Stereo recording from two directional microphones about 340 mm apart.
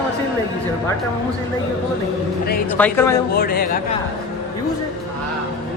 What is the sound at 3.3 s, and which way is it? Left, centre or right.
Speech, left.